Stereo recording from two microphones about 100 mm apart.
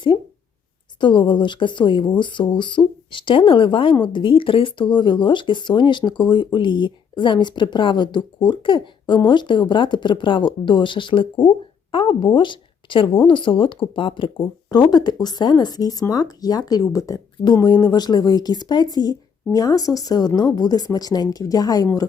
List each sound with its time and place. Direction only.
0.9 s speech: 50° left (ahead or behind)
14.8 s speech: 45° left (ahead or behind)